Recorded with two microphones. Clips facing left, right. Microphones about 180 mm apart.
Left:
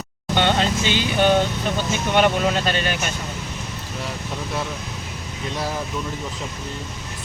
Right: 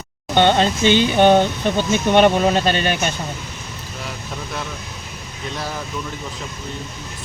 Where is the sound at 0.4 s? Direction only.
25° right (ahead or behind).